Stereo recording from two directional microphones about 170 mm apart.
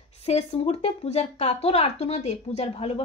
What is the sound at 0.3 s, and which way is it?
Speech, 35° left (ahead or behind).